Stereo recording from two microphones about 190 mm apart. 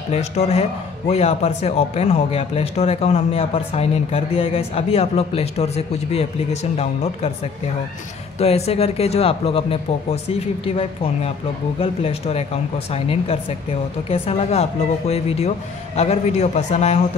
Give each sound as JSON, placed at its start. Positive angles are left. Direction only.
{"t": 0.1, "sound": "a man's voice", "side_deg": 35}
{"t": 8.4, "sound": "a man's voice", "side_deg": 35}